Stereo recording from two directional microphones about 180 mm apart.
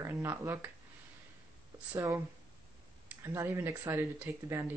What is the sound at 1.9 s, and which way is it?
Speech, 15° right (ahead or behind).